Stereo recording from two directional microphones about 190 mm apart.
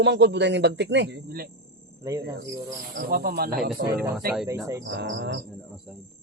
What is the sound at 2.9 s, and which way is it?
Speech, 50° right (ahead or behind).